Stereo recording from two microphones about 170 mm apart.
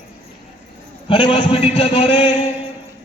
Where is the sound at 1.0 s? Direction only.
30° left (ahead or behind).